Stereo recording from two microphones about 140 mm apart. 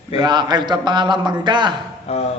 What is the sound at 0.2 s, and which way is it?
A man's voice, 30° right (ahead or behind).